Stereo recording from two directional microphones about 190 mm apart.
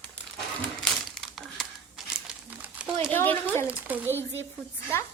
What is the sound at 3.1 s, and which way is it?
Speech, 10° left (ahead or behind).